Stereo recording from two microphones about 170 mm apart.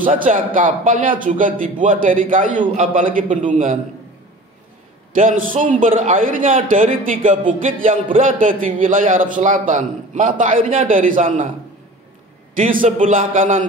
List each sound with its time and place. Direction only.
0.1 s a man's voice: 55° right (ahead or behind)
5.1 s a man's voice: 50° right (ahead or behind)
12.5 s a man's voice: 50° right (ahead or behind)